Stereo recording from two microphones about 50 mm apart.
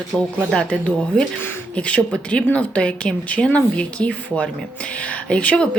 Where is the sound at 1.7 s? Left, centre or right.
Left.